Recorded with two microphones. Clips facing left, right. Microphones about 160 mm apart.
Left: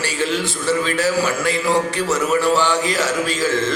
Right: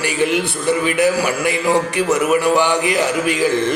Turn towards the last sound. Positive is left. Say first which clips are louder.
# right 3 dB
turn(degrees=-15)  # may be behind; listen again after turning